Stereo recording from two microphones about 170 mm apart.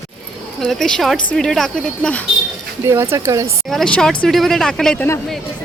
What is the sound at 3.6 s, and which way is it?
Speech, 5° left (ahead or behind).